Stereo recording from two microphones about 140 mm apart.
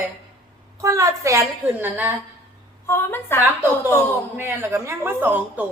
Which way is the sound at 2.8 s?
15° left (ahead or behind).